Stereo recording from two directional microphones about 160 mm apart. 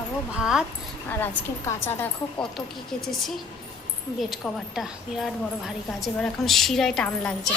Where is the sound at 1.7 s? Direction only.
15° left (ahead or behind).